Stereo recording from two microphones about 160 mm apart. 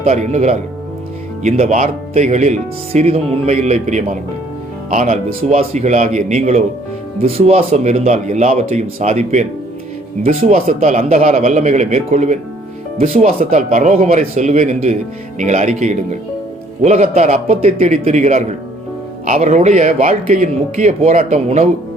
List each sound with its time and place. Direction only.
0.0 s speech: 45° right (ahead or behind)
10.5 s speech: 50° right (ahead or behind)